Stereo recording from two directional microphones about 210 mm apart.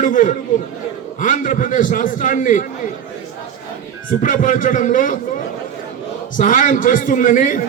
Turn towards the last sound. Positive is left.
turn(degrees=40)  # may be behind; listen again after turning